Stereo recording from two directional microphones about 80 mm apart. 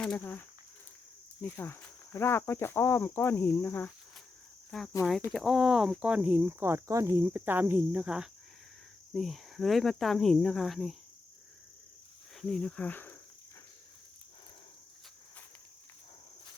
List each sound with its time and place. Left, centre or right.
0.2 s speech: left
5.3 s speech: centre; by 8.0 s right
8.0 s speech: centre
9.1 s speech: centre
12.4 s speech: centre
12.8 s speech: left